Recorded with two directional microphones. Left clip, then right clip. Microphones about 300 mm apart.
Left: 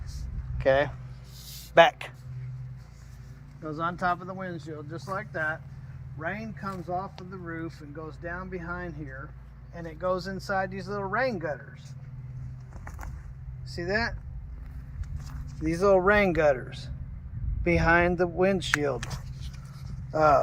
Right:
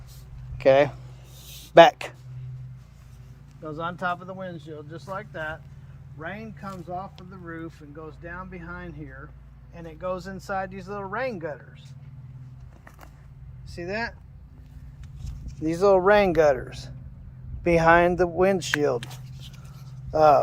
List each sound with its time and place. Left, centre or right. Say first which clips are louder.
0.6 s speech: right 5 dB; right
3.6 s speech: even; centre
13.7 s speech: left 2 dB; centre
15.6 s speech: right 3 dB; centre